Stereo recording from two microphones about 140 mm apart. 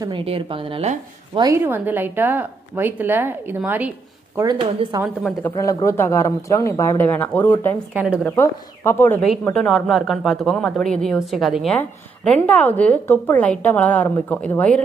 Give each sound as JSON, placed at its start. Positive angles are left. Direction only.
{"t": 0.2, "sound": "a woman's voice", "side_deg": -40}
{"t": 1.4, "sound": "a woman's voice", "side_deg": -20}
{"t": 4.4, "sound": "a woman's voice", "side_deg": -25}
{"t": 5.4, "sound": "a woman's voice", "side_deg": 15}
{"t": 7.9, "sound": "a woman's voice", "side_deg": -10}
{"t": 8.2, "sound": "a woman's voice", "side_deg": 15}
{"t": 9.2, "sound": "a woman's voice", "side_deg": 5}